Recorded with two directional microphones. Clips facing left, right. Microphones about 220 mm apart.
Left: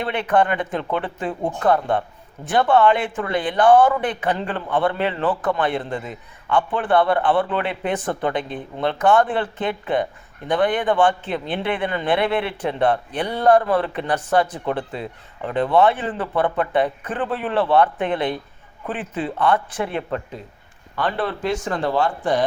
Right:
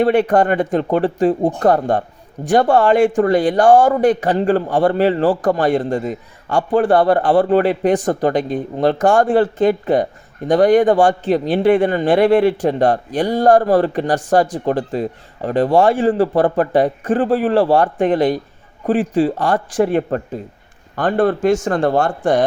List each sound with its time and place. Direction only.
0.0 s a man's voice: 45° right (ahead or behind)